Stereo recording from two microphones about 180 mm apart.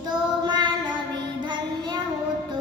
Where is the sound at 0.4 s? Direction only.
25° right (ahead or behind).